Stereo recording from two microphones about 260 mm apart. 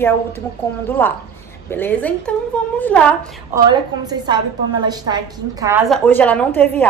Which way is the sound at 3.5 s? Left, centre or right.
Centre.